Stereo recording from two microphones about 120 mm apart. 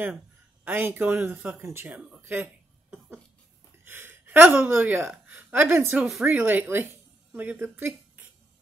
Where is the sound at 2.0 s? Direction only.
10° right (ahead or behind).